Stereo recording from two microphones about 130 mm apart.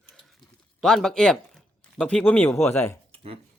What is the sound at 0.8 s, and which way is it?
A man's voice, 5° left (ahead or behind).